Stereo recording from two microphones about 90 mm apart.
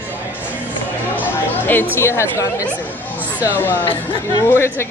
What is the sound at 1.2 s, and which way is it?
Chatter, 20° left (ahead or behind).